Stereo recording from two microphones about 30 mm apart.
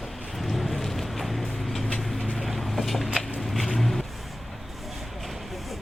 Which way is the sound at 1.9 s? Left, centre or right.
Centre.